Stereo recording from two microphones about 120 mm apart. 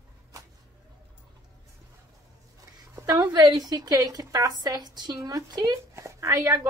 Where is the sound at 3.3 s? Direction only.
35° right (ahead or behind).